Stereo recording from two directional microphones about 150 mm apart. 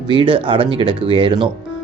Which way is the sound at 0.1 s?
35° right (ahead or behind).